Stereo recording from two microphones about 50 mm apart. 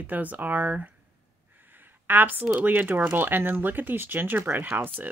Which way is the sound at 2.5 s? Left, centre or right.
Right.